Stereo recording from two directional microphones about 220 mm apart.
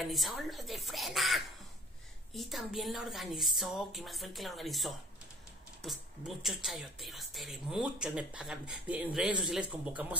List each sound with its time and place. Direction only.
0.0 s speech: centre (ahead or behind)